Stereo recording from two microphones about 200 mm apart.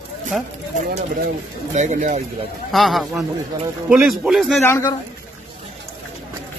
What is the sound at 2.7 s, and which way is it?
A man's voice, centre (ahead or behind).